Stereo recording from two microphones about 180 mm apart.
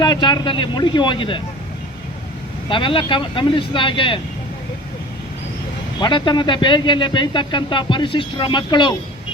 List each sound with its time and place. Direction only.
0.0 s speech: 25° left (ahead or behind)
2.6 s speech: 30° left (ahead or behind)
6.0 s speech: 25° left (ahead or behind)